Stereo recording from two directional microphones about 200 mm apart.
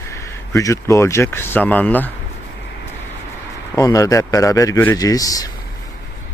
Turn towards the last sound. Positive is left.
turn(degrees=20)  # may be behind; listen again after turning